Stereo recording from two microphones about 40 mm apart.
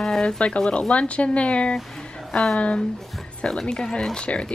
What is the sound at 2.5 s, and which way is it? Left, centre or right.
Speech, left.